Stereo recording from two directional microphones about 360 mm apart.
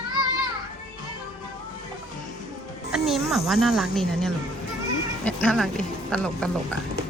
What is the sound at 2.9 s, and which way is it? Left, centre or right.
Speech, centre.